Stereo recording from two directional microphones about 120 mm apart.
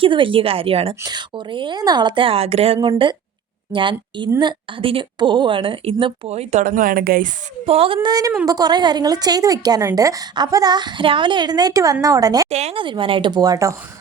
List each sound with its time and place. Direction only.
0.0 s a woman's voice: 45° right (ahead or behind)
1.0 s a woman's voice: 40° right (ahead or behind); by 2.7 s 55° right (ahead or behind)
2.8 s a woman's voice: 45° right (ahead or behind)
6.3 s speech: 65° right (ahead or behind)
7.6 s a woman's voice: 50° right (ahead or behind)
8.0 s a woman's voice: 30° right (ahead or behind)
12.5 s speech: 65° right (ahead or behind)
12.7 s a woman's voice: 45° right (ahead or behind); by 13.7 s 30° right (ahead or behind)